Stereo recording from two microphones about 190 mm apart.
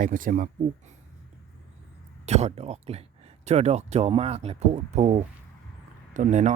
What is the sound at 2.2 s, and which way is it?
Speech, 35° right (ahead or behind).